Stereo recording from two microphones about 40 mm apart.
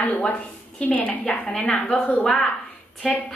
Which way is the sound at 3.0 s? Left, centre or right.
Centre.